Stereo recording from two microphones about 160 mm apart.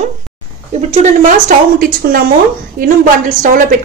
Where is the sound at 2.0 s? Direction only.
65° right (ahead or behind).